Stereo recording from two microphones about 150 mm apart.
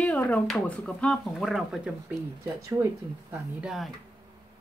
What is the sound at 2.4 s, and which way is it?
Speech, 15° right (ahead or behind).